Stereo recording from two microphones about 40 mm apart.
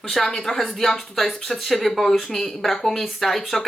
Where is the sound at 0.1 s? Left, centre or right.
Centre.